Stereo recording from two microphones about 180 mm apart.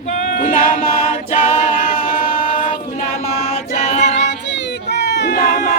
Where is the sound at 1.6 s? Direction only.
45° left (ahead or behind).